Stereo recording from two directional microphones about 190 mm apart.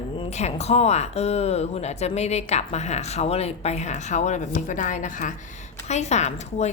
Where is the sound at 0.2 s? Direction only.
35° left (ahead or behind).